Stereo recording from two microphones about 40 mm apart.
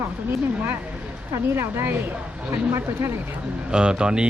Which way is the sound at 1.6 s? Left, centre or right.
Right.